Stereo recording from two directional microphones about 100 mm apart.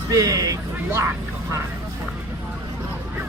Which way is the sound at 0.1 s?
35° right (ahead or behind).